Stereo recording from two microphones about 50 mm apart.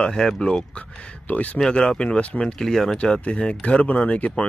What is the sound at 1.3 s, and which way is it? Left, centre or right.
Speech, left.